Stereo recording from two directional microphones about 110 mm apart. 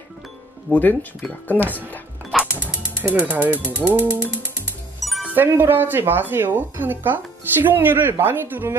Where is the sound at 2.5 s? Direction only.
15° right (ahead or behind).